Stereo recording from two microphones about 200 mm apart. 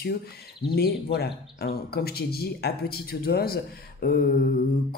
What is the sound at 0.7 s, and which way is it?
Speech, 50° left (ahead or behind).